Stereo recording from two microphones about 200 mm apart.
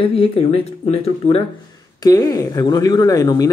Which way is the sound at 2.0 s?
15° left (ahead or behind).